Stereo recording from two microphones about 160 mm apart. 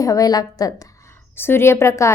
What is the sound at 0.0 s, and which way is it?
A woman's voice, 20° left (ahead or behind).